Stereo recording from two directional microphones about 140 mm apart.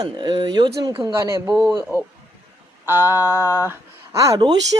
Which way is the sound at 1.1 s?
20° right (ahead or behind).